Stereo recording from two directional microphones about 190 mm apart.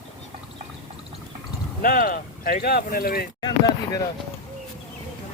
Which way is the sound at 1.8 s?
50° left (ahead or behind).